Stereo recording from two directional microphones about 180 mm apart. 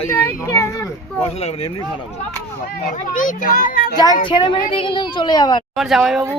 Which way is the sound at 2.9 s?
45° left (ahead or behind).